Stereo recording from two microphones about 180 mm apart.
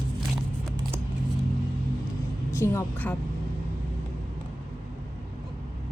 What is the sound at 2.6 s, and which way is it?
Speech, 15° left (ahead or behind).